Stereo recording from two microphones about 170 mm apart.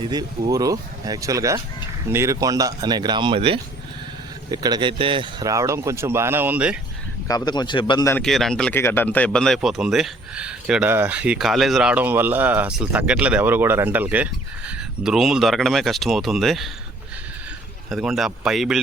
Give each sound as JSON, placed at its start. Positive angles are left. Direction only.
{"t": 0.1, "sound": "speech", "side_deg": -25}
{"t": 7.3, "sound": "speech", "side_deg": 25}
{"t": 8.1, "sound": "speech", "side_deg": 0}
{"t": 17.9, "sound": "speech", "side_deg": 0}